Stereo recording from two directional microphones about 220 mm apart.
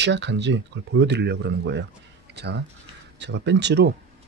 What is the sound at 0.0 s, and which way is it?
Speech, 50° right (ahead or behind).